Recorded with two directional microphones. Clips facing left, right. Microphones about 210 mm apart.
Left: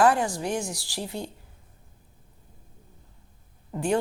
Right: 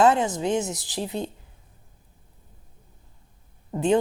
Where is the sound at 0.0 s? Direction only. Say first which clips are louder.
Right 2 dB; 20° right (ahead or behind).